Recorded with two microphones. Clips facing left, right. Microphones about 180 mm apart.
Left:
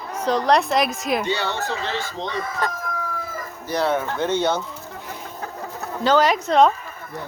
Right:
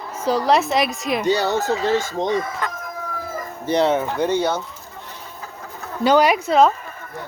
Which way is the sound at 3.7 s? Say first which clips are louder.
Right 4 dB; 25° right (ahead or behind).